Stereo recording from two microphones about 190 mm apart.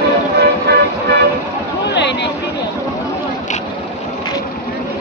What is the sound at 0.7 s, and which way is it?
Vehicle, 60° right (ahead or behind).